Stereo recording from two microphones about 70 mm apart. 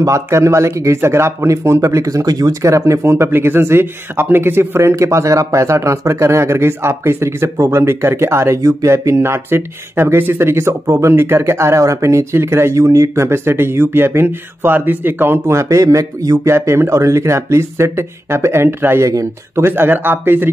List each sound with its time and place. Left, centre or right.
0.0 s speech: right
2.6 s speech: right
16.4 s speech: right